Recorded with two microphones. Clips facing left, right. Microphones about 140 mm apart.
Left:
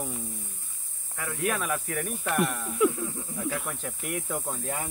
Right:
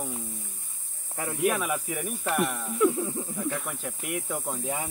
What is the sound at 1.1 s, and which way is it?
Speech, 30° right (ahead or behind).